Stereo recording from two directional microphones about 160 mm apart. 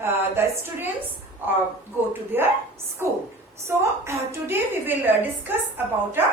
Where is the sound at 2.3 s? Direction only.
15° right (ahead or behind).